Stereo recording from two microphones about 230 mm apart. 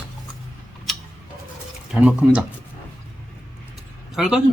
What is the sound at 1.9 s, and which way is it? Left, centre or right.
Speech, centre.